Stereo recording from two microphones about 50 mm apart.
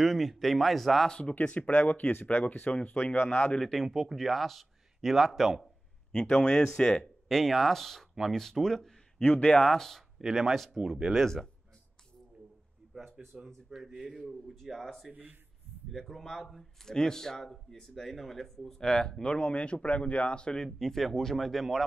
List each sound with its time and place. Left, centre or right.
0.0 s speech: centre
1.2 s speech: left
3.5 s speech: centre
6.1 s speech: centre
9.4 s speech: centre
9.7 s speech: centre
10.2 s speech: centre
12.9 s speech: centre